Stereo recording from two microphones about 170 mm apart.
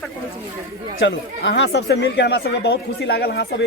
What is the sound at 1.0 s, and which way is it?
Speech, 90° left.